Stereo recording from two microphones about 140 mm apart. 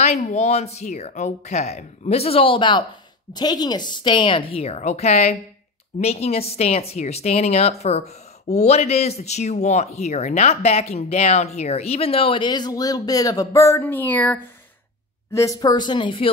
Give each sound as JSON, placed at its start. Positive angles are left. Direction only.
{"t": 0.0, "sound": "a woman's voice", "side_deg": 55}
{"t": 15.3, "sound": "a woman's voice", "side_deg": 25}